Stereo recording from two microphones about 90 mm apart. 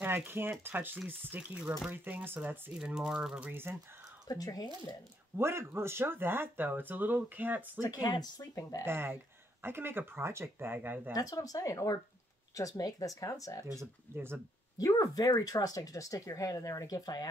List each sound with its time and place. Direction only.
0.3 s speech: 25° right (ahead or behind)
2.8 s speech: 10° right (ahead or behind)
4.3 s speech: 45° left (ahead or behind)
5.4 s speech: 30° right (ahead or behind)
7.8 s speech: 45° left (ahead or behind)
8.8 s speech: 25° right (ahead or behind)
11.1 s speech: 45° left (ahead or behind)
13.7 s speech: 25° right (ahead or behind)
14.8 s speech: 40° left (ahead or behind)